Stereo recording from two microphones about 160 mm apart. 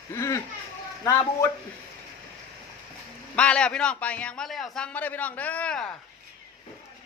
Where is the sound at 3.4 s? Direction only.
5° left (ahead or behind).